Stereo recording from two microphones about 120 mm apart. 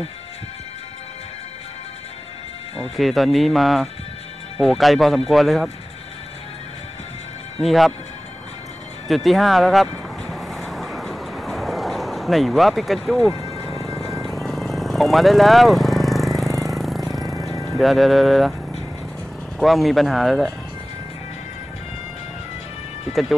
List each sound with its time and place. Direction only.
3.0 s speech: centre (ahead or behind)
7.6 s speech: centre (ahead or behind)
9.0 s vehicle: centre (ahead or behind)
13.3 s music: 30° right (ahead or behind)
13.8 s music: centre (ahead or behind)
17.6 s speech: centre (ahead or behind)
19.6 s speech: centre (ahead or behind)